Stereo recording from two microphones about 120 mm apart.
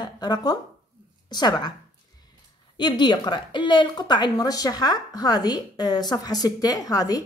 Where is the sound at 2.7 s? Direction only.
40° left (ahead or behind).